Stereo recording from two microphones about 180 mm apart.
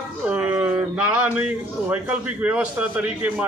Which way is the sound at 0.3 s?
5° right (ahead or behind).